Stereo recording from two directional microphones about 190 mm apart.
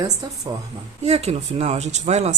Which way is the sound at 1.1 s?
35° right (ahead or behind).